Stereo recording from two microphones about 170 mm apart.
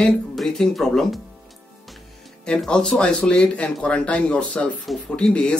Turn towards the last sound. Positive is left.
turn(degrees=5)  # may be behind; listen again after turning